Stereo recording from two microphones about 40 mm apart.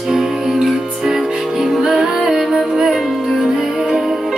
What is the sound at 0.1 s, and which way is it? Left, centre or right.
Music, centre.